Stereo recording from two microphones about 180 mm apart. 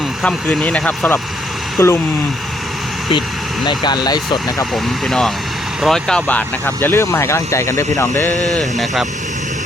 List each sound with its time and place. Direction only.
0.2 s speech: 5° left (ahead or behind)
3.1 s speech: 25° left (ahead or behind)
4.7 s speech: centre (ahead or behind)